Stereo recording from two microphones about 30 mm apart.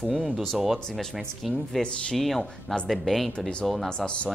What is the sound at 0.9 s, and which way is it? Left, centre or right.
Speech, centre.